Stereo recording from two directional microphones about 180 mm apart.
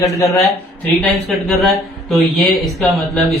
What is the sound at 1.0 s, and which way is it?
Speech, centre (ahead or behind).